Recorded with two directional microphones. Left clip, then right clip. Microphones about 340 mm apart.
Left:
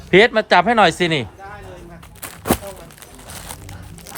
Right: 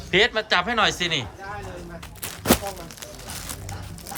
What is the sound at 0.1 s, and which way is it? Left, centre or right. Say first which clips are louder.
Speech: left 7 dB; centre.